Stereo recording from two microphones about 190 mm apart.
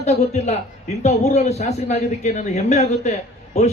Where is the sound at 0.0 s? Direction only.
35° left (ahead or behind).